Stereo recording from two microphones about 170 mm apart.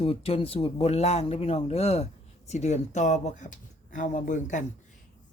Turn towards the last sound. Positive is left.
turn(degrees=45)  # may be behind; listen again after turning